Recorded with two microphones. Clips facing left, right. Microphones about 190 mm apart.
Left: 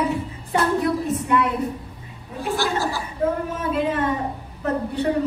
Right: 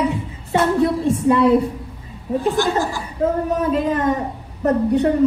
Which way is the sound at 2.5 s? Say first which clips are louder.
Right 3 dB; 15° right (ahead or behind).